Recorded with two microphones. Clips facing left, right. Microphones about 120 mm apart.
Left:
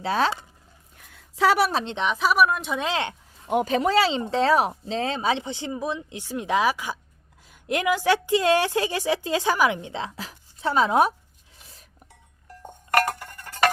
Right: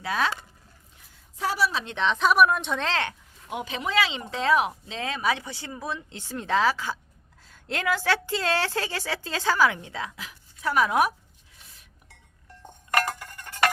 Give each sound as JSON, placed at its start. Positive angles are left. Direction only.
{"t": 0.0, "sound": "speech", "side_deg": 30}
{"t": 0.9, "sound": "a sound", "side_deg": 70}
{"t": 1.8, "sound": "speech", "side_deg": 25}
{"t": 2.0, "sound": "a woman's voice", "side_deg": 5}
{"t": 2.8, "sound": "a sound", "side_deg": 20}
{"t": 3.5, "sound": "a woman's voice", "side_deg": 45}